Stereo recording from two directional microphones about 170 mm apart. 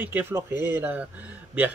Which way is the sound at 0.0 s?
10° right (ahead or behind).